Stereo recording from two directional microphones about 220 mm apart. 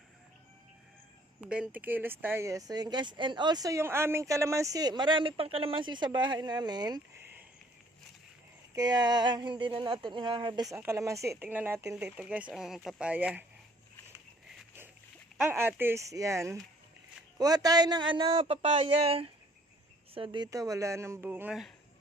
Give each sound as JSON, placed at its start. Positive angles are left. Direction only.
{"t": 1.4, "sound": "speech", "side_deg": -5}
{"t": 8.7, "sound": "speech", "side_deg": -15}
{"t": 15.4, "sound": "speech", "side_deg": -10}